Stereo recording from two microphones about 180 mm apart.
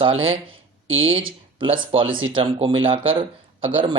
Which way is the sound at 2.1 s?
90° right.